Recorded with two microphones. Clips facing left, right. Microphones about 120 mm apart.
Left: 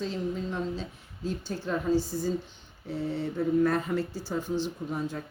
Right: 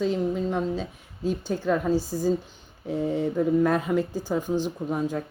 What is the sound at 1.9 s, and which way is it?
Speech, 40° right (ahead or behind).